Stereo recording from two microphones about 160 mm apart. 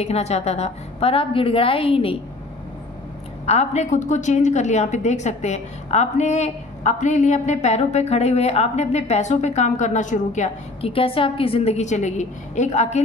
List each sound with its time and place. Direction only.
0.0 s a woman's voice: 40° left (ahead or behind)
3.4 s a woman's voice: 45° left (ahead or behind)